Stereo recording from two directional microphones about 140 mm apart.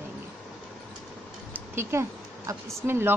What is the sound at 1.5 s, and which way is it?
Speech, 20° right (ahead or behind).